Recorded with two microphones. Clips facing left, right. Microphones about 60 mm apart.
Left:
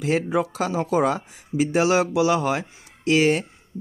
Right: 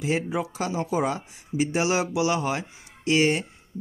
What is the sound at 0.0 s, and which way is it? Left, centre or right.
Speech, left.